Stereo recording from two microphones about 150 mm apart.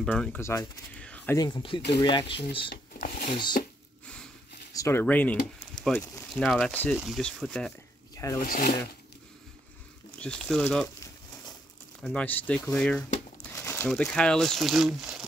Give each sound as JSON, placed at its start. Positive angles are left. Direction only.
{"t": 0.0, "sound": "speech", "side_deg": 10}
{"t": 0.9, "sound": "a sound", "side_deg": 10}
{"t": 1.3, "sound": "speech", "side_deg": 25}
{"t": 2.7, "sound": "a sound", "side_deg": 75}
{"t": 3.6, "sound": "a sound", "side_deg": 65}
{"t": 4.7, "sound": "speech", "side_deg": 15}
{"t": 6.4, "sound": "speech", "side_deg": 0}
{"t": 8.1, "sound": "rub", "side_deg": 20}
{"t": 8.4, "sound": "speech", "side_deg": 70}
{"t": 10.2, "sound": "speech", "side_deg": 5}
{"t": 12.0, "sound": "speech", "side_deg": 10}
{"t": 13.6, "sound": "crumpling", "side_deg": 15}
{"t": 13.8, "sound": "speech", "side_deg": 5}